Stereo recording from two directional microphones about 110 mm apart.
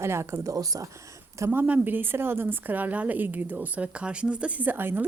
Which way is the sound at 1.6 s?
15° right (ahead or behind).